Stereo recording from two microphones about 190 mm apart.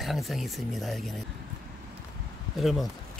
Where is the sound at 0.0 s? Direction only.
Centre (ahead or behind).